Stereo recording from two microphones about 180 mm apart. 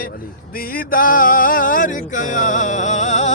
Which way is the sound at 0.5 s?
55° left (ahead or behind).